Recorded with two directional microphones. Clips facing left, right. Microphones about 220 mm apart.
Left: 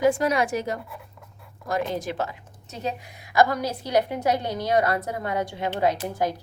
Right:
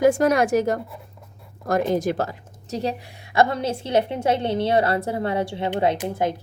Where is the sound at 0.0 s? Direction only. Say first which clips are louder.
Right 4 dB; 45° right (ahead or behind).